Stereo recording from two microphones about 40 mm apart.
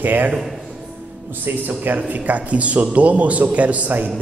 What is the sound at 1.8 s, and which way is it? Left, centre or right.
A man's voice, right.